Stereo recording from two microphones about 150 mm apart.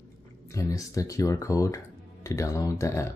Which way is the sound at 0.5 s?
20° left (ahead or behind).